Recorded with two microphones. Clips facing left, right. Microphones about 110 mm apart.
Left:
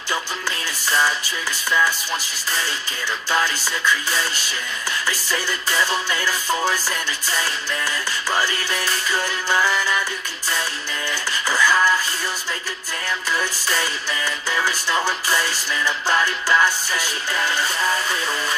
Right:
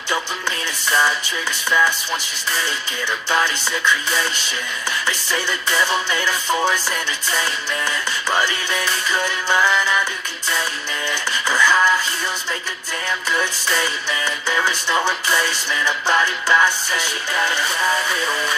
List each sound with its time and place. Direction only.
5.0 s music: 20° right (ahead or behind)
11.1 s music: 20° right (ahead or behind)
14.2 s music: 20° right (ahead or behind)